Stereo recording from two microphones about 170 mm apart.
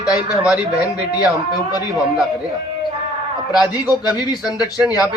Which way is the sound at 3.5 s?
10° right (ahead or behind).